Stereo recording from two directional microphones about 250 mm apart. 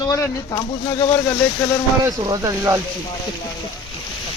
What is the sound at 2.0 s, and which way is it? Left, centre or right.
Speech, centre.